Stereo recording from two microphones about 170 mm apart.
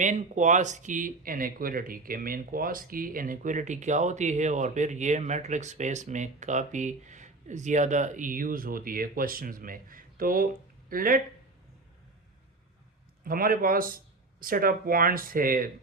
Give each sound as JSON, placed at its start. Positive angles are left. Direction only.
{"t": 0.0, "sound": "speech", "side_deg": -45}
{"t": 13.2, "sound": "speech", "side_deg": -55}